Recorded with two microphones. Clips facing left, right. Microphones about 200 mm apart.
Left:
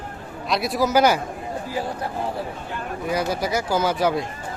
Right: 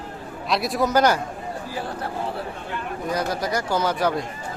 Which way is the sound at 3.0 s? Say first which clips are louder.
Left 2 dB; 10° left (ahead or behind).